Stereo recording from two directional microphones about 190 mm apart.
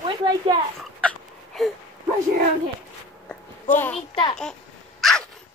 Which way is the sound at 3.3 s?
10° left (ahead or behind).